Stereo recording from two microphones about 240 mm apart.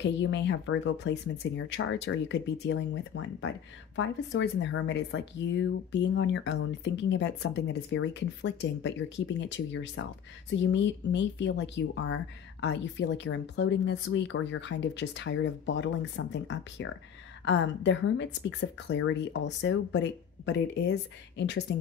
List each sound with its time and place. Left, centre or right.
0.0 s speech: left